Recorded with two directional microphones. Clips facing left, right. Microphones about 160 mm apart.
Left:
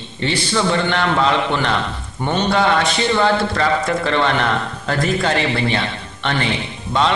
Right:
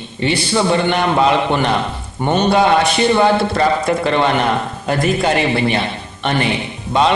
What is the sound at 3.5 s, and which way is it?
Speech, 30° right (ahead or behind).